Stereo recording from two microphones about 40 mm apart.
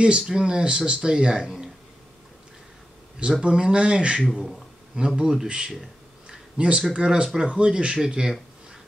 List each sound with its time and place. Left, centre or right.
0.0 s speech: right
3.2 s speech: right
6.2 s a sound: right
6.9 s speech: right